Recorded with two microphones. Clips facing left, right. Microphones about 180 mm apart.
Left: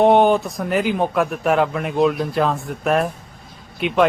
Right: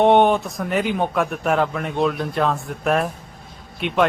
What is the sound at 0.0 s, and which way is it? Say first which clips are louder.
Speech: left 1 dB; centre (ahead or behind).